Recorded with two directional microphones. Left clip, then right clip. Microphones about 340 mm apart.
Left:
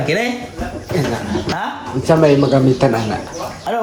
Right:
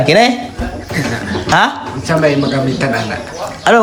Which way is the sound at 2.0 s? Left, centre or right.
Centre.